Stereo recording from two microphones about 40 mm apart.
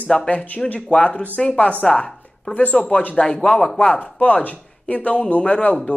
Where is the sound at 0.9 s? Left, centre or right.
Left.